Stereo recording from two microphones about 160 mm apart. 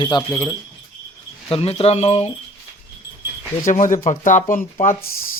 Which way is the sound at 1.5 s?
40° left (ahead or behind).